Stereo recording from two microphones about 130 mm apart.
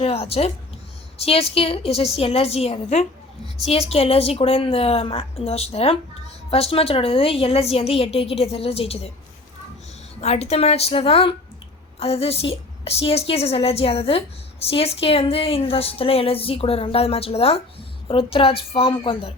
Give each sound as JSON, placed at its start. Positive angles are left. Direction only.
{"t": 0.0, "sound": "a sound", "side_deg": 50}
{"t": 1.2, "sound": "speech", "side_deg": 50}
{"t": 10.2, "sound": "speech", "side_deg": 50}